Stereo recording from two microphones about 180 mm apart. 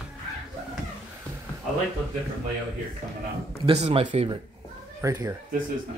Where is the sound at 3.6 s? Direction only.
35° right (ahead or behind).